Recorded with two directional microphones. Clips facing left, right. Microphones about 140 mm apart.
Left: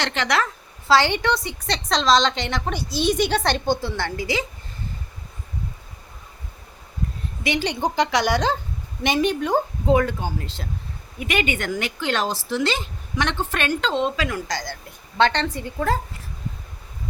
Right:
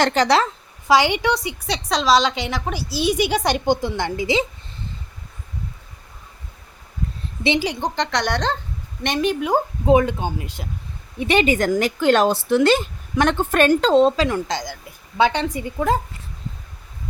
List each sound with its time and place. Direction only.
0.0 s speech: 40° right (ahead or behind)
0.9 s a woman's voice: 15° right (ahead or behind)
7.6 s speech: centre (ahead or behind)
9.8 s a woman's voice: 20° right (ahead or behind)
11.2 s speech: 30° right (ahead or behind)
14.8 s a woman's voice: 10° right (ahead or behind)